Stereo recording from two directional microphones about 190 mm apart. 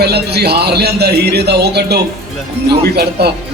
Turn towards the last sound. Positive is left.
turn(degrees=-55)  # may be behind; listen again after turning